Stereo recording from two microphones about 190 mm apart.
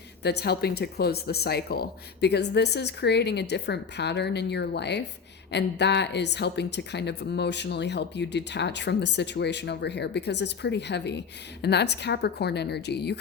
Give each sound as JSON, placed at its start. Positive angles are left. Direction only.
{"t": 0.2, "sound": "speech", "side_deg": 60}